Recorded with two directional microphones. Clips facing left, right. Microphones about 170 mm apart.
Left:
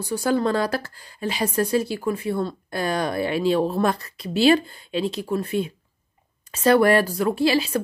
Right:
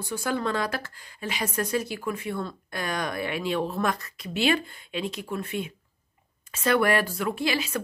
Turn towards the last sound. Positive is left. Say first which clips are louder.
# left 7 dB
turn(degrees=35)  # may be behind; listen again after turning